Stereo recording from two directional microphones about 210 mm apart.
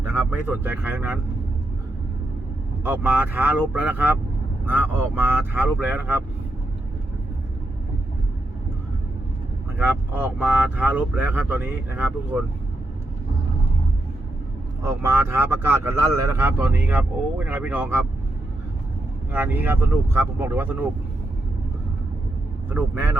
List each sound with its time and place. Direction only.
0.3 s speech: 10° right (ahead or behind)
2.8 s speech: 10° right (ahead or behind)
9.7 s speech: 10° right (ahead or behind)
14.8 s speech: 10° right (ahead or behind)
19.3 s speech: 10° right (ahead or behind)
22.7 s speech: 10° right (ahead or behind)